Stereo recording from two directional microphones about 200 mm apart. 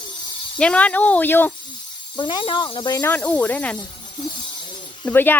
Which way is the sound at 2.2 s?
25° left (ahead or behind).